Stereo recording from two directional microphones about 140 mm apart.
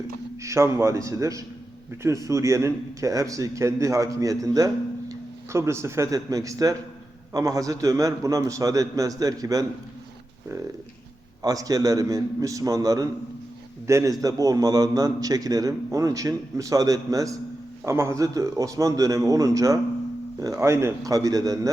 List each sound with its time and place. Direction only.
0.4 s a man's voice: 20° right (ahead or behind)
11.4 s a man's voice: 25° right (ahead or behind)